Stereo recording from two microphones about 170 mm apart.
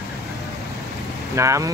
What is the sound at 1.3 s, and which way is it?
Speech, 20° right (ahead or behind).